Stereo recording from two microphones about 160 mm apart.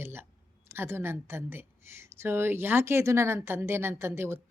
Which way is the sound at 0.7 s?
15° right (ahead or behind).